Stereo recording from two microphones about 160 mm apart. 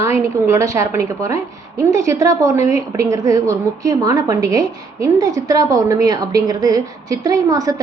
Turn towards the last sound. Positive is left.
turn(degrees=-20)  # may be behind; listen again after turning